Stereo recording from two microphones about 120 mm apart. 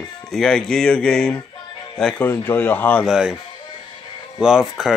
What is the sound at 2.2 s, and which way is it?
Speech, 20° left (ahead or behind).